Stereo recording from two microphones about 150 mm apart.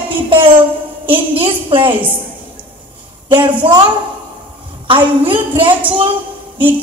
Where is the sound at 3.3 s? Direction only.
30° right (ahead or behind).